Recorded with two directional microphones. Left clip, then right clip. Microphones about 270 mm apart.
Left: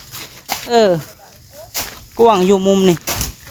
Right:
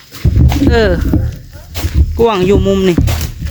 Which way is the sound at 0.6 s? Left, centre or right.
Centre.